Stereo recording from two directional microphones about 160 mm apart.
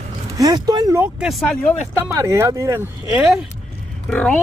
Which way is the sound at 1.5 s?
10° left (ahead or behind).